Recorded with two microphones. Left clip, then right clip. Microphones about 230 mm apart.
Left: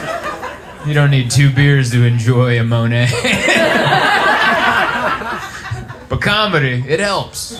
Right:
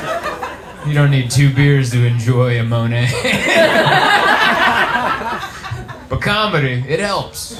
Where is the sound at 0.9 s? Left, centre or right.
Left.